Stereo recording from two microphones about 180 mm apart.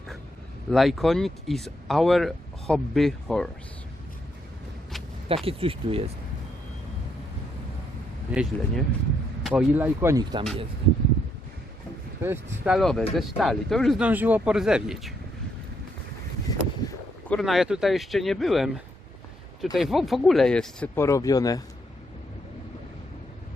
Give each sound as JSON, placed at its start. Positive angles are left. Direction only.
{"t": 0.7, "sound": "speech", "side_deg": 0}
{"t": 5.3, "sound": "speech", "side_deg": -30}
{"t": 8.3, "sound": "speech", "side_deg": -5}
{"t": 12.2, "sound": "speech", "side_deg": -10}
{"t": 12.7, "sound": "speech", "side_deg": 0}
{"t": 16.8, "sound": "artillery fire", "side_deg": 20}
{"t": 17.2, "sound": "speech", "side_deg": 0}